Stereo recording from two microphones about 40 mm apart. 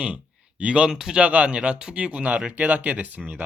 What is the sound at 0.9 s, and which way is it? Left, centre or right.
Speech, centre.